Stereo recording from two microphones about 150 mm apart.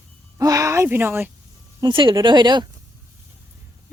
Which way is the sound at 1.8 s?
35° right (ahead or behind).